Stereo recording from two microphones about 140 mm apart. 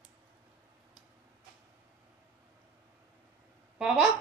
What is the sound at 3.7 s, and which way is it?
Speech, 5° right (ahead or behind).